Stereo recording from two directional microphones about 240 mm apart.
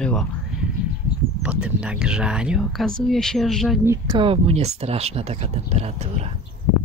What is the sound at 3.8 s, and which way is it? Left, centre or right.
Speech, centre.